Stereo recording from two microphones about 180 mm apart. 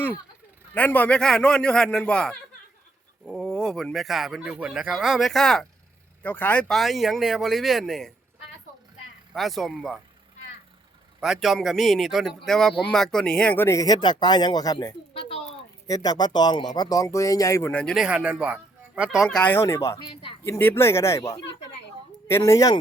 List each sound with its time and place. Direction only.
0.7 s speech: 10° left (ahead or behind)
9.3 s speech: centre (ahead or behind)
11.2 s speech: centre (ahead or behind); by 20.3 s 25° left (ahead or behind)
20.4 s speech: 10° left (ahead or behind)